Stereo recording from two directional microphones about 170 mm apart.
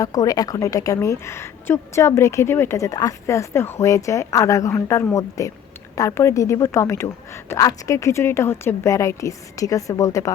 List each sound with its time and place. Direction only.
0.0 s a woman's voice: 20° left (ahead or behind)